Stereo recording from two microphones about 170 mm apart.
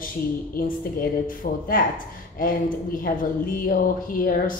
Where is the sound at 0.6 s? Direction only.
55° left (ahead or behind).